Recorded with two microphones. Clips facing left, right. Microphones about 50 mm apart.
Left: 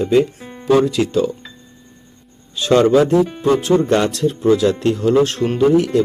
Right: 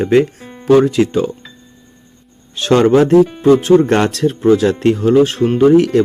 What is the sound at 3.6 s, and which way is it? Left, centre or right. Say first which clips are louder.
Speech: right 4 dB; right.